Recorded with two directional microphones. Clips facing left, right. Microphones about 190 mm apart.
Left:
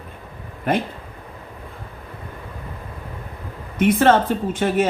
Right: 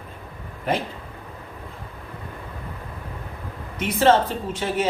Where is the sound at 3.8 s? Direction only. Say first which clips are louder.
Left 3 dB; 55° left (ahead or behind).